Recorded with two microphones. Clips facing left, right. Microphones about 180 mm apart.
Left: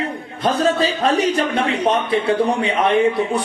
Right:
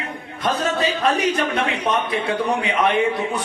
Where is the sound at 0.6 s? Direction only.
30° left (ahead or behind).